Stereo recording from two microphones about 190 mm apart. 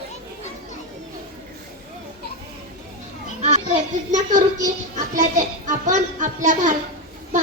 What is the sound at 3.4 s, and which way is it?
Children playing, 35° right (ahead or behind).